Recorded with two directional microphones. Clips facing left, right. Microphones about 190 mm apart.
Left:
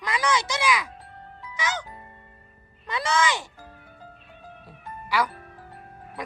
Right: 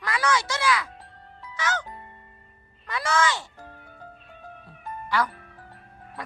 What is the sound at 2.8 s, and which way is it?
Speech, 20° left (ahead or behind).